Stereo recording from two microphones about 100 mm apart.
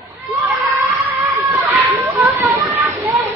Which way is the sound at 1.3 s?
30° right (ahead or behind).